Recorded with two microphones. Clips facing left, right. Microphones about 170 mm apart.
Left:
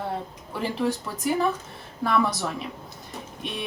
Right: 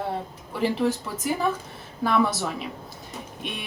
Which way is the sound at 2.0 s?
Centre (ahead or behind).